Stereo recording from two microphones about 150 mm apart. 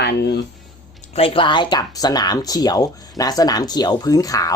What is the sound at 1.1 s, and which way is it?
Speech, 40° left (ahead or behind).